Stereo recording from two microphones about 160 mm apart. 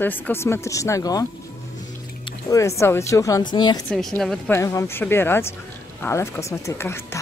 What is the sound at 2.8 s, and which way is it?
Speech, 20° left (ahead or behind).